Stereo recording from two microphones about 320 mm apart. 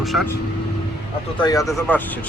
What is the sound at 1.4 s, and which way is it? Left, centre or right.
Speech, centre.